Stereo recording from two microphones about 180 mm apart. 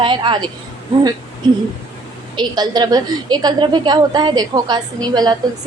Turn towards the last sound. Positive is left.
turn(degrees=-20)  # may be behind; listen again after turning